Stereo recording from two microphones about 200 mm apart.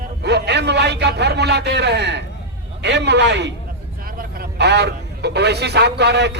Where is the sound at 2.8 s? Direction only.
60° right (ahead or behind).